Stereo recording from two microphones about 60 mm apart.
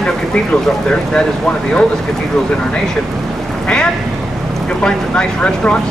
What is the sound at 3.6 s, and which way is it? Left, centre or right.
Quack, centre.